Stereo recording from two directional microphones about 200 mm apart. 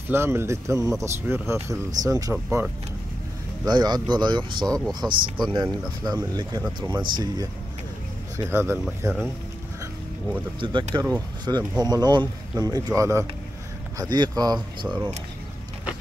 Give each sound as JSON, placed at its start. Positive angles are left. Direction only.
{"t": 0.1, "sound": "speech", "side_deg": -10}
{"t": 2.3, "sound": "speech", "side_deg": -5}
{"t": 3.6, "sound": "speech", "side_deg": -20}
{"t": 10.6, "sound": "speech", "side_deg": -25}